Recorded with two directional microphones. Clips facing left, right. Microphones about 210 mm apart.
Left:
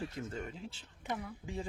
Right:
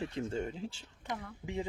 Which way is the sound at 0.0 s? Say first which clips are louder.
Right 5 dB; 25° right (ahead or behind).